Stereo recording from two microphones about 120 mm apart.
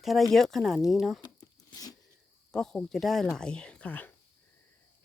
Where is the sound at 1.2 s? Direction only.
30° left (ahead or behind).